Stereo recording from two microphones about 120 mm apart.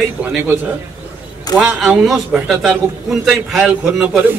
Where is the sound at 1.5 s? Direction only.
30° left (ahead or behind).